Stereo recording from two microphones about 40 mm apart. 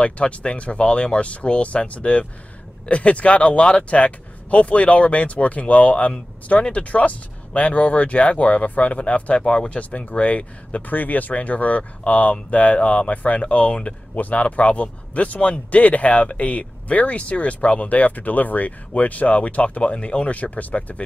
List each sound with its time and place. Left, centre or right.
0.0 s speech: left